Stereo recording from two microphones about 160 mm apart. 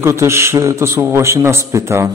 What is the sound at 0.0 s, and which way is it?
Speech, 15° right (ahead or behind).